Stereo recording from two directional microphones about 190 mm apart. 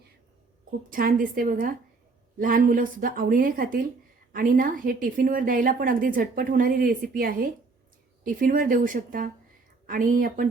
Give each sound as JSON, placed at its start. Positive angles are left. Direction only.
{"t": 0.9, "sound": "a woman's voice", "side_deg": -45}